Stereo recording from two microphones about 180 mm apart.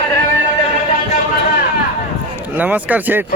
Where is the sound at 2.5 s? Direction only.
10° right (ahead or behind).